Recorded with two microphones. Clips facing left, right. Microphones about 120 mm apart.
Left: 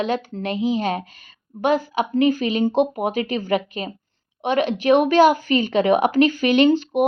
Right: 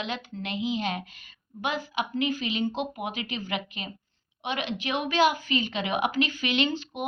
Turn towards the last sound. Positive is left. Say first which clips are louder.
# left 12 dB
turn(degrees=50)  # may be behind; listen again after turning